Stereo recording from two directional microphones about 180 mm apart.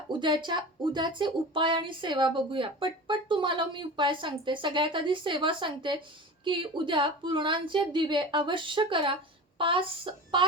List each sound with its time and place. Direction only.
0.1 s speech: 25° right (ahead or behind)